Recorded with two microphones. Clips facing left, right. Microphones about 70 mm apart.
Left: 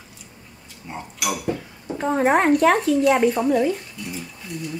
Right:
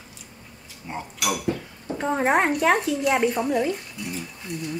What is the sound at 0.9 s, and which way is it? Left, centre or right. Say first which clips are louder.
Speech: even; centre.